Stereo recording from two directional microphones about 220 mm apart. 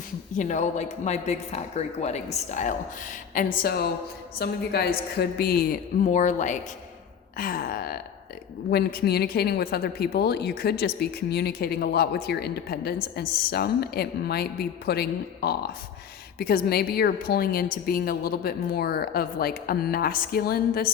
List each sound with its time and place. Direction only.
0.3 s a woman's voice: 35° left (ahead or behind)